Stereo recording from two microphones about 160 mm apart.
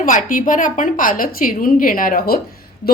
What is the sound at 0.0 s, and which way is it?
A woman's voice, 55° left (ahead or behind).